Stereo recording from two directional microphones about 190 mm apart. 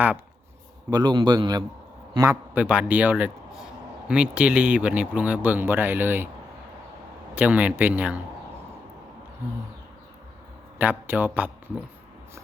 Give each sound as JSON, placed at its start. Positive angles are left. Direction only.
{"t": 0.9, "sound": "a man's voice", "side_deg": -25}
{"t": 2.1, "sound": "a man's voice", "side_deg": -10}
{"t": 7.3, "sound": "speech", "side_deg": -10}
{"t": 10.8, "sound": "a man's voice", "side_deg": -10}